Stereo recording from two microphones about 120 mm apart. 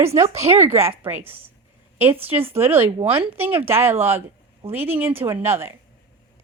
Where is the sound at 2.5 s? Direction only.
20° right (ahead or behind).